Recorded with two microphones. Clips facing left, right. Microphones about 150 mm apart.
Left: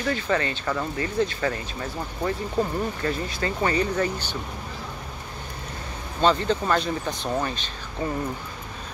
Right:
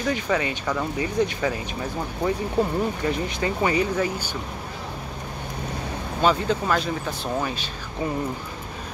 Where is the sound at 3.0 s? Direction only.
15° right (ahead or behind).